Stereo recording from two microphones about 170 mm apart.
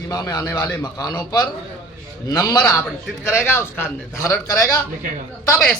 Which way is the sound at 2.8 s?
10° left (ahead or behind).